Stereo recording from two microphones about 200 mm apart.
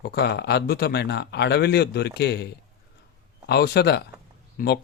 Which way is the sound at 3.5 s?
55° left (ahead or behind).